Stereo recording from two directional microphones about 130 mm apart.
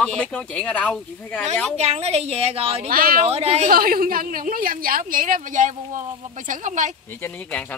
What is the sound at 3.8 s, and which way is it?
Speech, 90° right.